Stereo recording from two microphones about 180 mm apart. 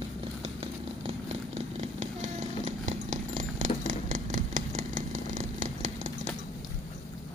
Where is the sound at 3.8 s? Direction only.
45° right (ahead or behind).